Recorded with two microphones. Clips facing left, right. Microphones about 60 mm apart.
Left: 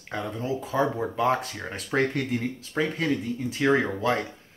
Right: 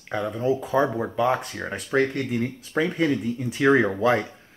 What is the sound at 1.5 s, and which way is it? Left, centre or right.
Speech, centre.